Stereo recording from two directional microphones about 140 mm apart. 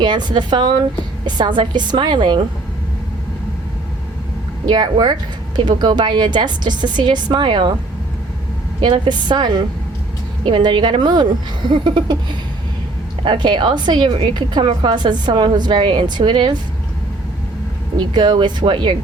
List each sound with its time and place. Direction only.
0.0 s a woman's voice: 30° right (ahead or behind)
4.6 s a woman's voice: 35° right (ahead or behind)
8.8 s a woman's voice: 35° right (ahead or behind)
13.2 s a woman's voice: 35° right (ahead or behind)
17.9 s a woman's voice: 35° right (ahead or behind)